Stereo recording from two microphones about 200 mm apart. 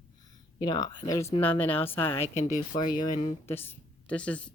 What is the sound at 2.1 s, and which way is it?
Speech, 35° left (ahead or behind).